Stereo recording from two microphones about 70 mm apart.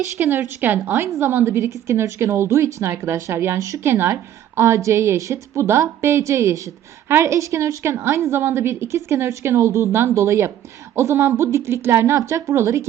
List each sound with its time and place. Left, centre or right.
0.2 s a woman's voice: right
1.5 s a woman's voice: right
3.6 s a woman's voice: right